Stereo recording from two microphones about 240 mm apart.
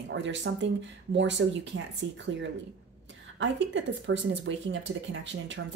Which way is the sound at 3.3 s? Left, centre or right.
Right.